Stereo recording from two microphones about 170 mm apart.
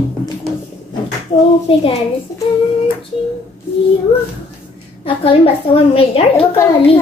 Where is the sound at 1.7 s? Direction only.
30° left (ahead or behind).